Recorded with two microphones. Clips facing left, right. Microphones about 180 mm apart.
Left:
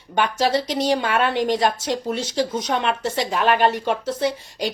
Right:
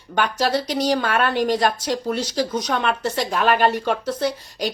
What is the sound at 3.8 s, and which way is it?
Speech, 20° left (ahead or behind).